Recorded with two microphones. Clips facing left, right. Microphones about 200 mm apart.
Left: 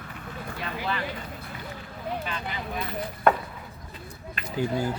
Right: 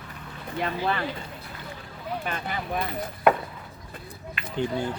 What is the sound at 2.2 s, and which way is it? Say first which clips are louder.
Speech: right 2 dB; 50° right (ahead or behind).